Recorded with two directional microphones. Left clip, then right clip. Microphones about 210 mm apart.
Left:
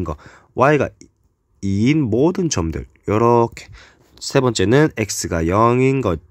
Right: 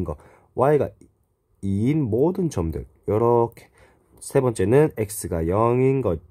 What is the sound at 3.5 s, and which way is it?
Speech, 20° left (ahead or behind).